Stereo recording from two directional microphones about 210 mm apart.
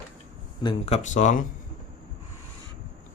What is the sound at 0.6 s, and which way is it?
Speech, 25° left (ahead or behind).